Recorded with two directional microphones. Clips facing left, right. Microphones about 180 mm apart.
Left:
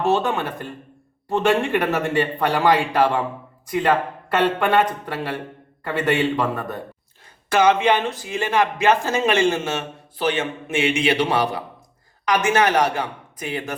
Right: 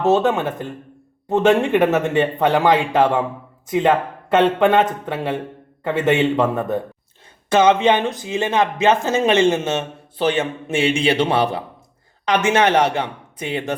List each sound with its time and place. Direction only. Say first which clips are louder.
0.3 s a man's voice: right 4 dB; 20° right (ahead or behind)
4.4 s speech: right 4 dB; 20° right (ahead or behind)